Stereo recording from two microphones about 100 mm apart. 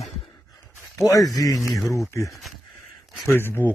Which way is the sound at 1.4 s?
35° left (ahead or behind).